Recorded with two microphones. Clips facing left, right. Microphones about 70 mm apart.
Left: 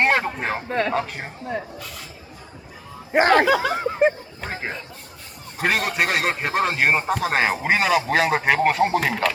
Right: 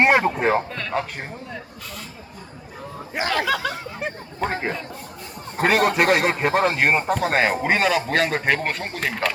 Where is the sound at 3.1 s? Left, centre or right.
Left.